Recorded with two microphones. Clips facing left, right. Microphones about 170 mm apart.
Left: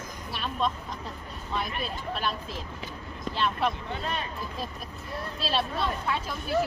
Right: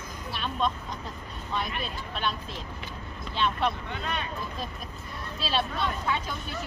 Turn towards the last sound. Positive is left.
turn(degrees=0)  # may be behind; listen again after turning